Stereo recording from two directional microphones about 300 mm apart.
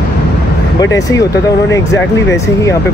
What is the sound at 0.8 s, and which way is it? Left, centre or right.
Speech, centre.